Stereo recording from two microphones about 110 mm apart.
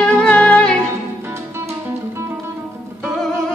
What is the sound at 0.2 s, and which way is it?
Music, 10° left (ahead or behind).